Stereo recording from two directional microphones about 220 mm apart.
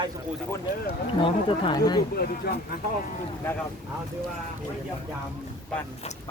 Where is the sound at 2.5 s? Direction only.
45° left (ahead or behind).